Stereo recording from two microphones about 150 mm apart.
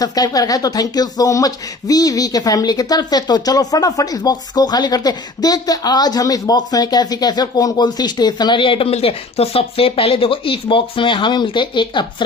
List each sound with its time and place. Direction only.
0.0 s speech: 25° left (ahead or behind)